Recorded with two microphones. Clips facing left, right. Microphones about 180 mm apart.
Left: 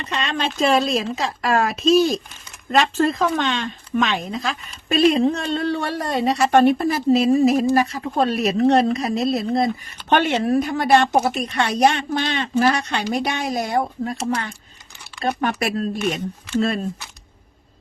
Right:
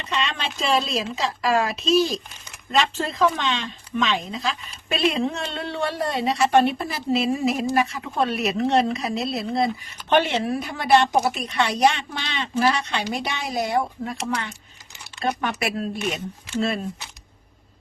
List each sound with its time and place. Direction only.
0.1 s speech: 45° left (ahead or behind)